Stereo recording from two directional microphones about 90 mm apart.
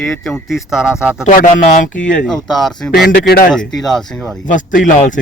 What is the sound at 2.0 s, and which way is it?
Speech, 5° left (ahead or behind).